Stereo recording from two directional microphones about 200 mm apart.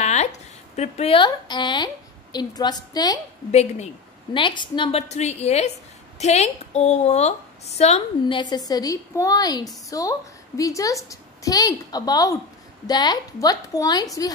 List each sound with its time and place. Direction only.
0.0 s a woman's voice: 35° left (ahead or behind); by 3.2 s 20° left (ahead or behind)
3.5 s a woman's voice: 30° left (ahead or behind)